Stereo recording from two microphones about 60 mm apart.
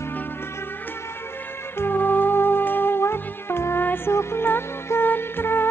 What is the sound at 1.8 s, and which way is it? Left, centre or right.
Music, left.